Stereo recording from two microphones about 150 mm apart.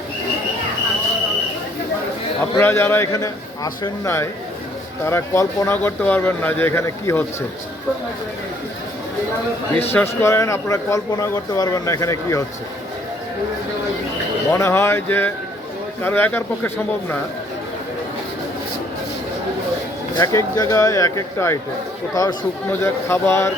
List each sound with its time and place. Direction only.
2.6 s speech: 15° left (ahead or behind)
9.9 s speech: 15° left (ahead or behind)
14.5 s speech: 20° left (ahead or behind)
20.1 s speech: 25° left (ahead or behind)